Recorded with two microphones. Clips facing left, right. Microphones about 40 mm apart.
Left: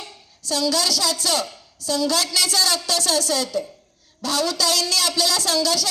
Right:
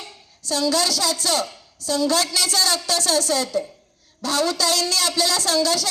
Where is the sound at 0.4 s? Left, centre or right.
Right.